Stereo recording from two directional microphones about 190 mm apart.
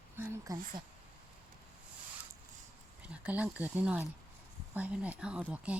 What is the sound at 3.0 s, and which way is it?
Speech, 5° right (ahead or behind).